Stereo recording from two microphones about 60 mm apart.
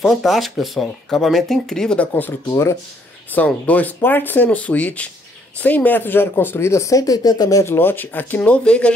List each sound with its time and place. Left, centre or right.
0.0 s speech: centre
2.0 s speech: left
2.4 s speech: left
3.3 s speech: left
7.6 s speech: left
8.5 s speech: centre